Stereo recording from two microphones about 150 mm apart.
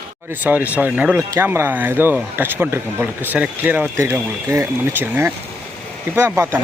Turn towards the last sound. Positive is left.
turn(degrees=-15)  # may be behind; listen again after turning